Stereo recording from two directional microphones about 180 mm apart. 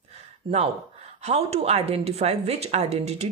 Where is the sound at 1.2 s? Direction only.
35° right (ahead or behind).